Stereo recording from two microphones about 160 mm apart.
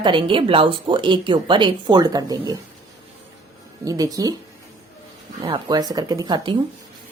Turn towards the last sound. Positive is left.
turn(degrees=-30)  # may be behind; listen again after turning